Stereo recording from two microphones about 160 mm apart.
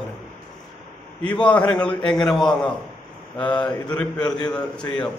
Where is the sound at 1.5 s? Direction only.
5° left (ahead or behind).